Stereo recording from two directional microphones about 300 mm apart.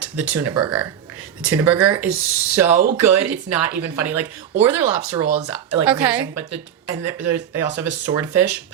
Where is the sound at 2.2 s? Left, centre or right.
Left.